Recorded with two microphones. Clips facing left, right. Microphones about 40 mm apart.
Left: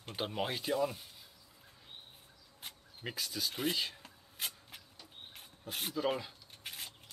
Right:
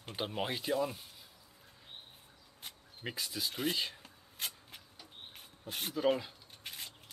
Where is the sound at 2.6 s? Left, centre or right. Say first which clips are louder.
Right 1 dB; centre.